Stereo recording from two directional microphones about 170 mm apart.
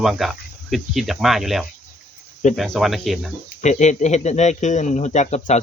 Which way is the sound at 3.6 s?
45° left (ahead or behind).